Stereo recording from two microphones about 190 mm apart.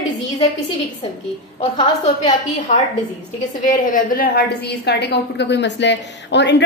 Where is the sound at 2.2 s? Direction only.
40° left (ahead or behind).